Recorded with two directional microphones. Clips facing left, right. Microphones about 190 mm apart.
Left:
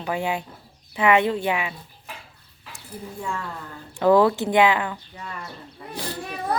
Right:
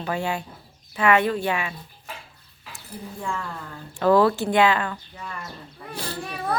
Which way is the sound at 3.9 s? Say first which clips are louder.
Left 1 dB; 15° left (ahead or behind).